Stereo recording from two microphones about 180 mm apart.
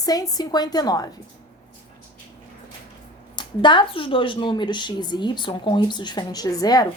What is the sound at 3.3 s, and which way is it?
Speech, 25° left (ahead or behind).